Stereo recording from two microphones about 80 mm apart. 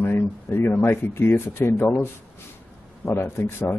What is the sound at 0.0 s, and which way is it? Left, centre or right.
Speech, left.